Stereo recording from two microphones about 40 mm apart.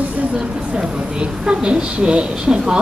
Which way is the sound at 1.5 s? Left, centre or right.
Right.